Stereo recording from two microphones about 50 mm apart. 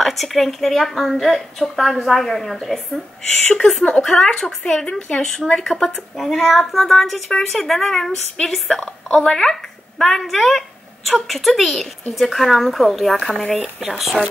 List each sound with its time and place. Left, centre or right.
0.0 s a woman's voice: centre
3.3 s a woman's voice: centre
4.7 s speech: left
5.1 s a woman's voice: centre
13.6 s a woman's voice: centre